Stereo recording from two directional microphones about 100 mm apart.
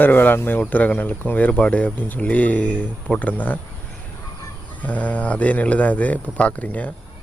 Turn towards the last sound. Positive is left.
turn(degrees=15)  # may be behind; listen again after turning